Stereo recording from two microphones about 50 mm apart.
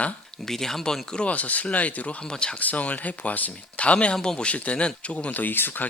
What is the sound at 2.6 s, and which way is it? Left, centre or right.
Speech, left.